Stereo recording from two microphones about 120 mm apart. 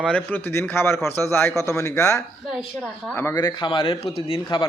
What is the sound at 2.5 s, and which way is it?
Speech, 5° right (ahead or behind).